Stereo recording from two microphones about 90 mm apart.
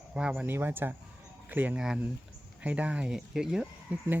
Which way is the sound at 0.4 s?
25° right (ahead or behind).